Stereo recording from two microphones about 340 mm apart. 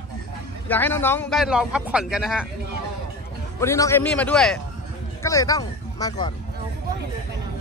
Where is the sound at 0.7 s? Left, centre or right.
Centre.